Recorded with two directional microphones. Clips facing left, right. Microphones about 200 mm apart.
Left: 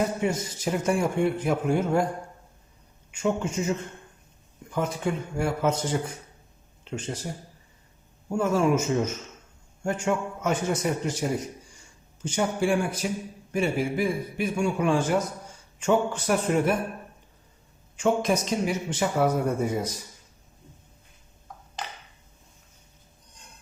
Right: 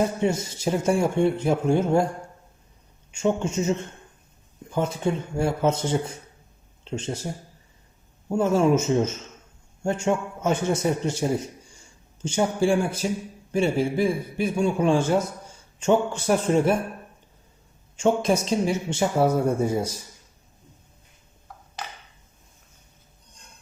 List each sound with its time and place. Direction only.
0.2 s speech: 25° right (ahead or behind)
3.1 s speech: 25° right (ahead or behind)
4.7 s speech: 25° right (ahead or behind)
8.3 s speech: 25° right (ahead or behind)
17.9 s speech: 30° right (ahead or behind)